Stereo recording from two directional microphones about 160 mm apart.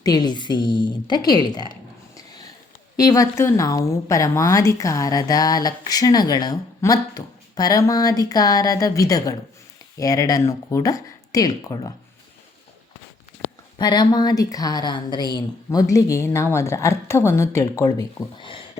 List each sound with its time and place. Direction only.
0.0 s speech: 25° left (ahead or behind)
3.0 s speech: 20° left (ahead or behind)
13.7 s speech: 25° left (ahead or behind)